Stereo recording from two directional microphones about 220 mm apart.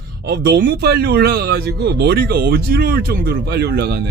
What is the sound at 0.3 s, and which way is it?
Speech, 50° right (ahead or behind).